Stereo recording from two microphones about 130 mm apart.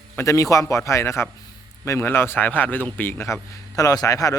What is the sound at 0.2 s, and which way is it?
A man's voice, 25° left (ahead or behind).